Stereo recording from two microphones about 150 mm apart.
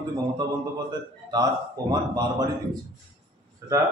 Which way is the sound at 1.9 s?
25° right (ahead or behind).